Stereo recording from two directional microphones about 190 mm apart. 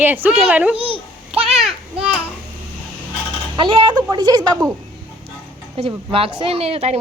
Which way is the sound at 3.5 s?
25° right (ahead or behind).